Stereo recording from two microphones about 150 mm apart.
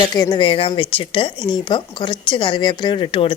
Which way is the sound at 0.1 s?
25° left (ahead or behind).